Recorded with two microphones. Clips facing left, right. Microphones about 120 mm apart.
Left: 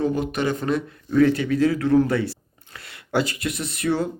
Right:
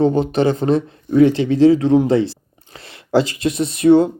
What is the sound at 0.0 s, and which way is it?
Speech, 30° right (ahead or behind).